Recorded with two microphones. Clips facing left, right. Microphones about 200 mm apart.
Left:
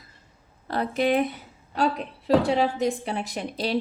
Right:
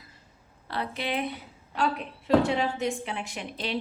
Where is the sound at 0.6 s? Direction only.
45° left (ahead or behind).